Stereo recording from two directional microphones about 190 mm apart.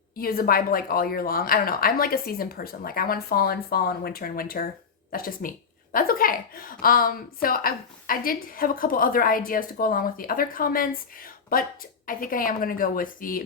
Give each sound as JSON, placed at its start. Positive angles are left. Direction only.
{"t": 0.2, "sound": "a woman's voice", "side_deg": 50}